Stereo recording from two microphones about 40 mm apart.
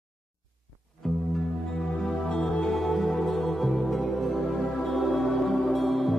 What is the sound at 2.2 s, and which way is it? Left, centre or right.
Music, left.